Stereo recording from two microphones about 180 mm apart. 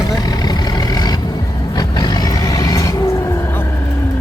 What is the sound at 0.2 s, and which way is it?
Vehicle, 20° left (ahead or behind).